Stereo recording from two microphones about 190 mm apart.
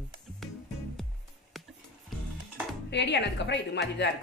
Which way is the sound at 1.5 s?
Centre (ahead or behind).